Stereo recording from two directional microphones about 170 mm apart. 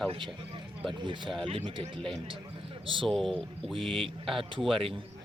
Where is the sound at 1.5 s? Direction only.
30° right (ahead or behind).